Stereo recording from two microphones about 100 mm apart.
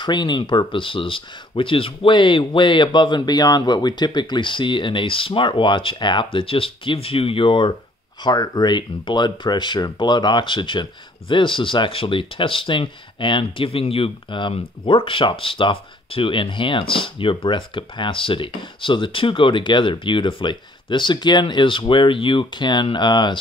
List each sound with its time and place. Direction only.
0.0 s speech: 50° left (ahead or behind)
8.2 s speech: 45° left (ahead or behind)